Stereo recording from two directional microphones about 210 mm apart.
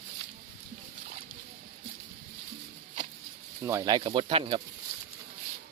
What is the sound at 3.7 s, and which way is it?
Speech, 15° right (ahead or behind).